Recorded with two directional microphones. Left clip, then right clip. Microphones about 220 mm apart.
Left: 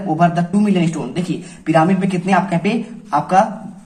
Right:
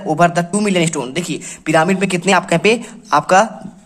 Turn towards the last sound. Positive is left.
turn(degrees=-50)  # may be behind; listen again after turning